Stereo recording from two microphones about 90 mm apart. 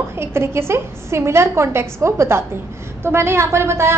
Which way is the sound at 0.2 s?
30° right (ahead or behind).